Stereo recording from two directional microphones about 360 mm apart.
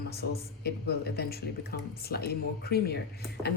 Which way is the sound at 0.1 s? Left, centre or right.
Left.